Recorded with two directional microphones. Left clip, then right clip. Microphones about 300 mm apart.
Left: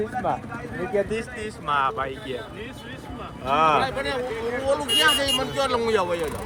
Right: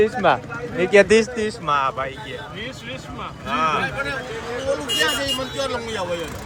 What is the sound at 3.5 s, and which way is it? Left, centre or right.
Speech, centre.